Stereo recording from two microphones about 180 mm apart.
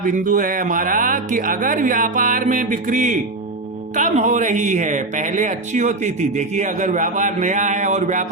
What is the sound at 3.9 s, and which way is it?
Speech, 40° right (ahead or behind).